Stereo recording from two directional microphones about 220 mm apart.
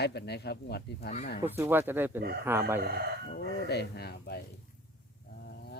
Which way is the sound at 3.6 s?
45° left (ahead or behind).